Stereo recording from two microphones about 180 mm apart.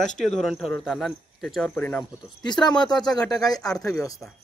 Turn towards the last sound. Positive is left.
turn(degrees=20)  # may be behind; listen again after turning